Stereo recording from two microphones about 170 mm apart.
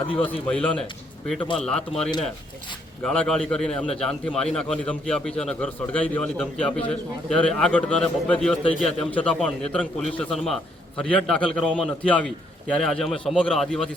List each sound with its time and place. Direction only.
0.1 s a man's voice: 10° left (ahead or behind)
1.9 s speech: 30° left (ahead or behind)
3.0 s a man's voice: 5° left (ahead or behind)